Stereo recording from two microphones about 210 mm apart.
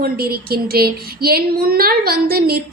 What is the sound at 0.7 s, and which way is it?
A woman's voice, 45° right (ahead or behind).